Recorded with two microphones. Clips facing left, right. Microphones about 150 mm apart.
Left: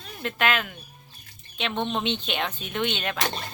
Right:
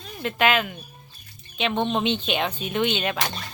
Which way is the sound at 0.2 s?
5° right (ahead or behind).